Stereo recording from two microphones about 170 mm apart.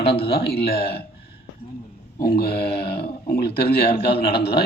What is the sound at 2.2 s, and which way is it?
A man's voice, 65° left (ahead or behind).